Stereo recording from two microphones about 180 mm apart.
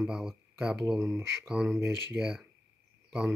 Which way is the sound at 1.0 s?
15° right (ahead or behind).